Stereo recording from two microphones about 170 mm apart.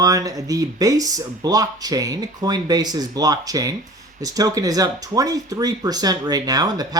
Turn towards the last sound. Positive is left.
turn(degrees=-20)  # may be behind; listen again after turning